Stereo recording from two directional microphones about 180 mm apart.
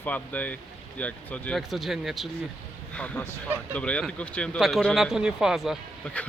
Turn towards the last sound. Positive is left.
turn(degrees=5)  # may be behind; listen again after turning